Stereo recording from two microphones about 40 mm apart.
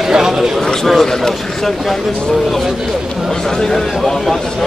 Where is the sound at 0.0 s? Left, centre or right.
Centre.